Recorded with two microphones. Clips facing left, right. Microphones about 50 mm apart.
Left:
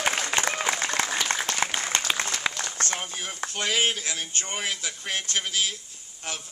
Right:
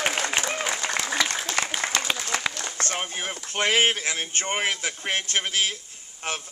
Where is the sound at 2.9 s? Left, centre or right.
Right.